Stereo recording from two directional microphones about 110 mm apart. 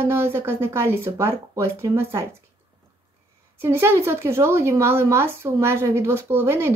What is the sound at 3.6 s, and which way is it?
A woman's voice, 25° right (ahead or behind).